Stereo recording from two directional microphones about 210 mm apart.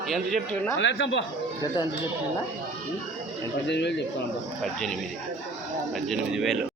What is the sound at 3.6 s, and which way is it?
Speech, 55° left (ahead or behind).